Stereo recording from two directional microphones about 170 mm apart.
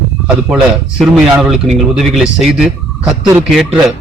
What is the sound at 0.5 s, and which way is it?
Speech, centre (ahead or behind).